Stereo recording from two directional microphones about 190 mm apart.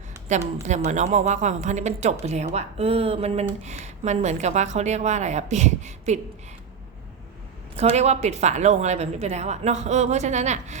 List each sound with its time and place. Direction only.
0.3 s speech: 40° right (ahead or behind)
7.8 s speech: 35° right (ahead or behind)